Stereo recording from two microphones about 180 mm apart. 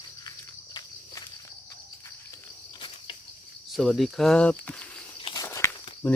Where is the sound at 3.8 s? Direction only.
Centre (ahead or behind).